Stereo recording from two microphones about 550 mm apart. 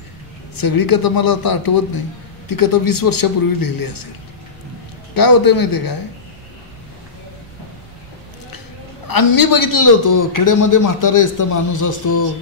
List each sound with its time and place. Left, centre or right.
0.6 s a man's voice: left
5.1 s a man's voice: left
9.0 s a man's voice: left